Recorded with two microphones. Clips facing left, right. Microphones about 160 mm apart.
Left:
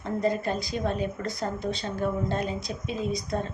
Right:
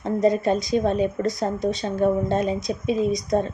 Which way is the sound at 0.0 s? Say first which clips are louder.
Right 7 dB; 20° right (ahead or behind).